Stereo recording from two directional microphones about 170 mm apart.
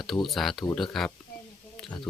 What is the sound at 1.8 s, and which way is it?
Speech, 25° left (ahead or behind).